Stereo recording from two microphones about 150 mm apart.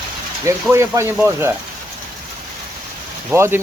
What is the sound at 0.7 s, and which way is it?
Speech, 20° right (ahead or behind).